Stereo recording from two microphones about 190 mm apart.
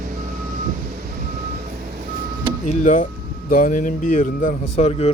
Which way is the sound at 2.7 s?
40° left (ahead or behind).